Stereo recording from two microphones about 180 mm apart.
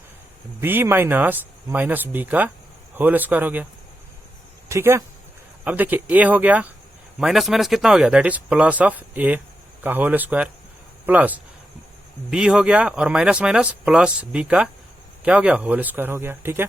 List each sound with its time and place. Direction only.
0.6 s speech: 10° right (ahead or behind)
4.7 s speech: 15° right (ahead or behind)